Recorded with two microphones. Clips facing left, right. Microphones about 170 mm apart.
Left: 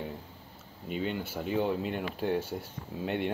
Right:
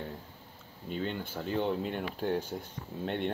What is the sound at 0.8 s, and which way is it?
Speech, 10° left (ahead or behind).